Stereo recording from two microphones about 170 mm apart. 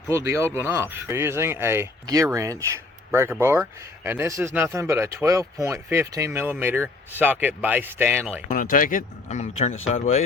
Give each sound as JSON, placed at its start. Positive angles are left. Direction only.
{"t": 0.1, "sound": "speech", "side_deg": -15}
{"t": 8.4, "sound": "speech", "side_deg": 55}